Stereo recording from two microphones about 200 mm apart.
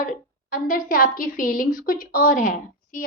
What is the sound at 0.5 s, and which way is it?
Speech, 45° left (ahead or behind).